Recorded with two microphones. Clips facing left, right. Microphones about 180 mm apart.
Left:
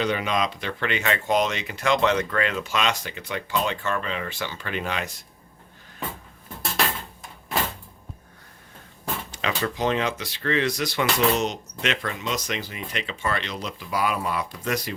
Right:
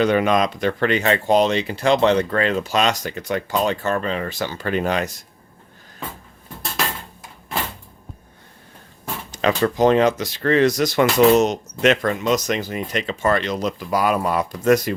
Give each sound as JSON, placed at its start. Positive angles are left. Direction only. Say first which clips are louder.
{"t": 0.0, "sound": "speech", "louder": "right 7 dB", "side_deg": -50}
{"t": 9.3, "sound": "speech", "louder": "right 10 dB", "side_deg": -45}